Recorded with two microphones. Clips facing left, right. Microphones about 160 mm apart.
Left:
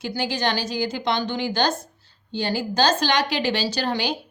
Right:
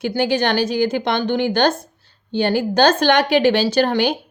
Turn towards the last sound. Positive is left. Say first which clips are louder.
# right 8 dB
turn(degrees=-55)  # may be behind; listen again after turning